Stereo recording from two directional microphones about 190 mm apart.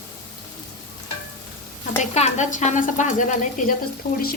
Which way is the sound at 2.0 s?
35° left (ahead or behind).